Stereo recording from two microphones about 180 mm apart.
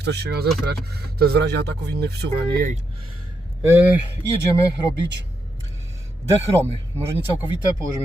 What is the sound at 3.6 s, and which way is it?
Speech, 10° right (ahead or behind).